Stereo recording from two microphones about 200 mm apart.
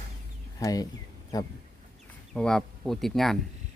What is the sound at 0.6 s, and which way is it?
Speech, 20° left (ahead or behind).